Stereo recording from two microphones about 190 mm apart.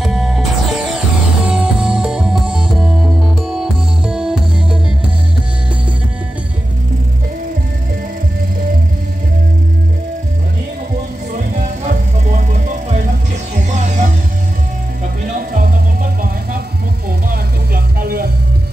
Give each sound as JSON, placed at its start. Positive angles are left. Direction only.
{"t": 0.0, "sound": "music", "side_deg": 0}
{"t": 11.8, "sound": "music", "side_deg": -40}
{"t": 15.5, "sound": "music", "side_deg": -45}
{"t": 17.3, "sound": "vehicle", "side_deg": -50}